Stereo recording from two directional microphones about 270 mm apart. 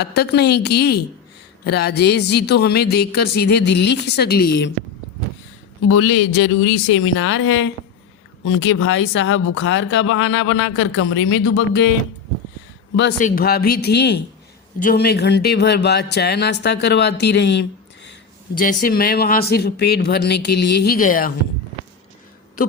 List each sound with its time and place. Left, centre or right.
0.0 s speech: left
5.8 s a man's voice: left
13.1 s speech: left